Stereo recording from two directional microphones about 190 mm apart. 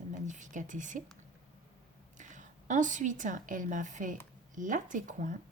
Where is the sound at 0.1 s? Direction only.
40° right (ahead or behind).